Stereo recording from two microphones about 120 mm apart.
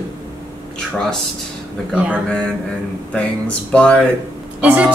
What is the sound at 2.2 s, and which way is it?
Speech, 10° left (ahead or behind).